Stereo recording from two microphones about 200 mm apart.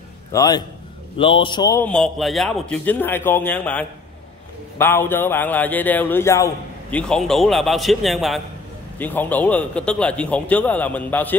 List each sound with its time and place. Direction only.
0.3 s a man's voice: 20° left (ahead or behind)
1.9 s a man's voice: centre (ahead or behind)